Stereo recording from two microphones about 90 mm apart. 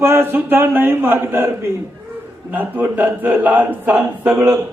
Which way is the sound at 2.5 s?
20° right (ahead or behind).